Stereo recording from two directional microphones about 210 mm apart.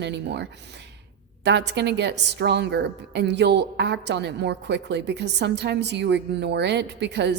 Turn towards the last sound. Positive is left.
turn(degrees=-55)  # may be behind; listen again after turning